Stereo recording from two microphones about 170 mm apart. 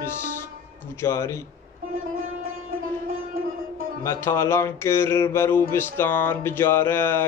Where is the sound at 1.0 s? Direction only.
15° left (ahead or behind).